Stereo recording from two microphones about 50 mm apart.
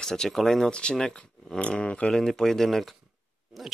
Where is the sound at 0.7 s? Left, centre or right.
Left.